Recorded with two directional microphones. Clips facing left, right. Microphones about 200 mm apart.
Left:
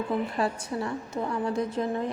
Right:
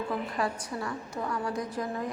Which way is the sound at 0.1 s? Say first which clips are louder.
Left 4 dB; 25° left (ahead or behind).